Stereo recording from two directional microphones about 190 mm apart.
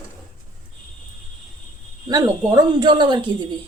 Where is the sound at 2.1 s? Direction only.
20° right (ahead or behind).